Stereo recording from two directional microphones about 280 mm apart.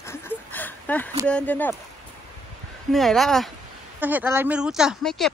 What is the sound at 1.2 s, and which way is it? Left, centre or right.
Speech, centre.